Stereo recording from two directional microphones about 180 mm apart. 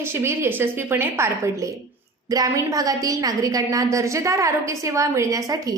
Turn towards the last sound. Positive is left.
turn(degrees=-20)  # may be behind; listen again after turning